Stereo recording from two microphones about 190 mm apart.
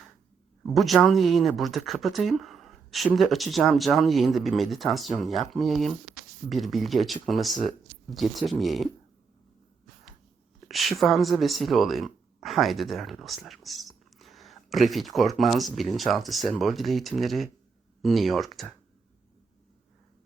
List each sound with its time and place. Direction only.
0.6 s speech: centre (ahead or behind)
10.7 s speech: centre (ahead or behind)